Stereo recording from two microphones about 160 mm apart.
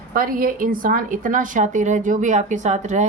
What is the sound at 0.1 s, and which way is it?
A woman's voice, 60° right (ahead or behind).